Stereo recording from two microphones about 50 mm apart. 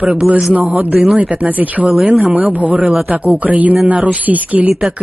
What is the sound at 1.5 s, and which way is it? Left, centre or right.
Speech, right.